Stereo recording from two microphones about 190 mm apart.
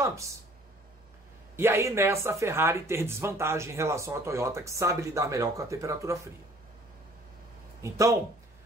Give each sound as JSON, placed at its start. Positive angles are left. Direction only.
{"t": 0.0, "sound": "speech", "side_deg": -15}
{"t": 1.6, "sound": "speech", "side_deg": -15}
{"t": 7.8, "sound": "speech", "side_deg": -15}